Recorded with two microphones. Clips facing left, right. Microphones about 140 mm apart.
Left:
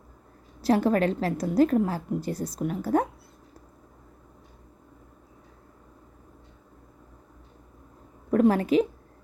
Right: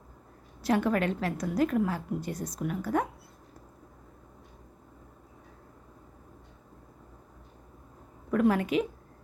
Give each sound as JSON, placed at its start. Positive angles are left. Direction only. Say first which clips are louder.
{"t": 0.6, "sound": "a woman's voice", "louder": "left 4 dB", "side_deg": 35}
{"t": 8.3, "sound": "a woman's voice", "louder": "left 4 dB", "side_deg": 35}